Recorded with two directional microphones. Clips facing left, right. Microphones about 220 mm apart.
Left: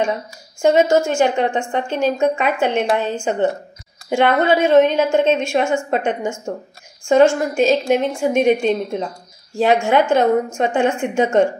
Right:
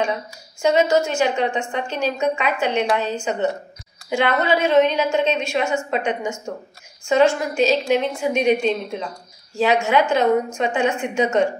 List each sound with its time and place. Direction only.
0.6 s a woman's voice: 50° left (ahead or behind)